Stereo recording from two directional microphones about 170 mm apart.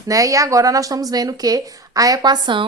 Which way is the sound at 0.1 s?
20° right (ahead or behind).